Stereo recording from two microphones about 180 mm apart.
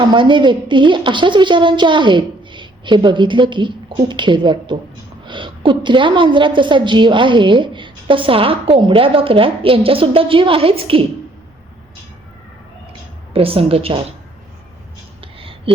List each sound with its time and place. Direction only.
0.0 s a woman's voice: 25° right (ahead or behind)
13.3 s a woman's voice: 30° right (ahead or behind)
15.4 s a sound: 30° right (ahead or behind)